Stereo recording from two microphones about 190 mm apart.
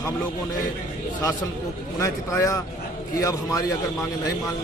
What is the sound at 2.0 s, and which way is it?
A man's voice, 15° left (ahead or behind).